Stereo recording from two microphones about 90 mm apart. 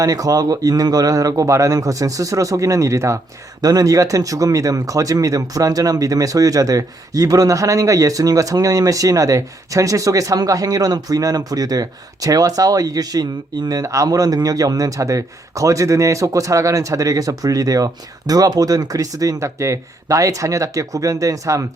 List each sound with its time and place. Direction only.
0.0 s speech: 40° right (ahead or behind)